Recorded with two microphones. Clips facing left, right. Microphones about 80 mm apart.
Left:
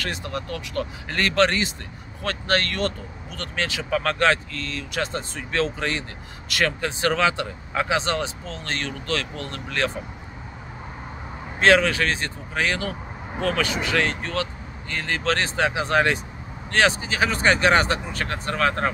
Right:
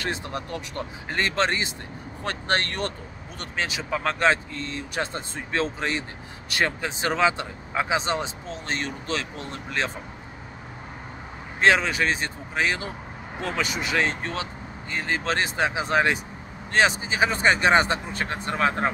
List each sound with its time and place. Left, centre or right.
0.0 s speech: right
11.6 s speech: centre